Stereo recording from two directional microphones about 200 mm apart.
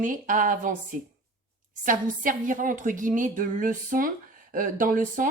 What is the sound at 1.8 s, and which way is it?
Speech, 40° right (ahead or behind).